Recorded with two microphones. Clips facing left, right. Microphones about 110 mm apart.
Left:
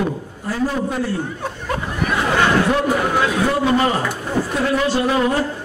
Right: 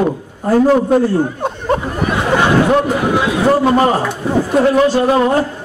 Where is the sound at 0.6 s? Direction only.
55° right (ahead or behind).